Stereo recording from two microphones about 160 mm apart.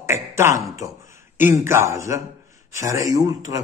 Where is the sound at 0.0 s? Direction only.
15° right (ahead or behind).